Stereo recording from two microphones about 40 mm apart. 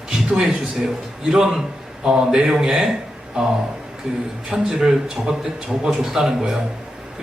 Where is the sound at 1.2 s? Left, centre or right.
Centre.